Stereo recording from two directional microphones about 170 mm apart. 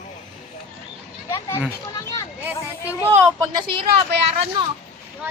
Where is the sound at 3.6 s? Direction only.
65° right (ahead or behind).